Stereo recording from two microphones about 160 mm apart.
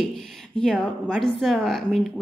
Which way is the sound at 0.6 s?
5° left (ahead or behind).